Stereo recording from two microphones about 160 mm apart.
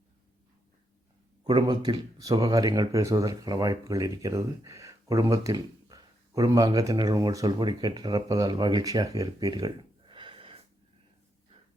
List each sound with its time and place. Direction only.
1.5 s speech: 30° right (ahead or behind)